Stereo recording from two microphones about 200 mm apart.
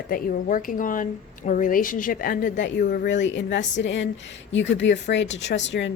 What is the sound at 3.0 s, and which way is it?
Speech, 65° left (ahead or behind).